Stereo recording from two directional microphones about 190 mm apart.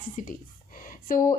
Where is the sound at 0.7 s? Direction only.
45° left (ahead or behind).